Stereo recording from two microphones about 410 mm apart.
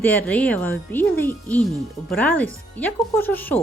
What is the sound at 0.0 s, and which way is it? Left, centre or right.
Speech, centre.